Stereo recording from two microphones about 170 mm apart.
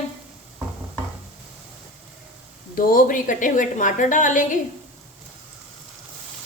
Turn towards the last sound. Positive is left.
turn(degrees=50)  # may be behind; listen again after turning